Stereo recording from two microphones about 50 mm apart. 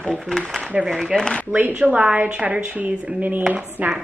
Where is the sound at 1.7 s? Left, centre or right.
Right.